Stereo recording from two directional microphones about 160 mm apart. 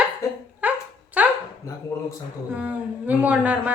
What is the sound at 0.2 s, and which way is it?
Dog, 20° left (ahead or behind).